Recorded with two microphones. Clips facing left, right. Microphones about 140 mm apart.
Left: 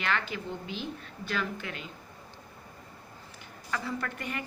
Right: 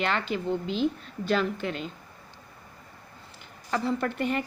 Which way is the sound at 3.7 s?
30° right (ahead or behind).